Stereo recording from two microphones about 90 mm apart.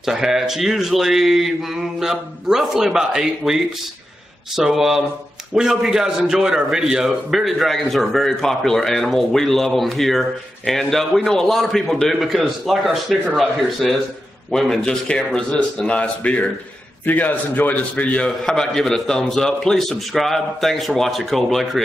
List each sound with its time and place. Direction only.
0.0 s a man's voice: 5° right (ahead or behind)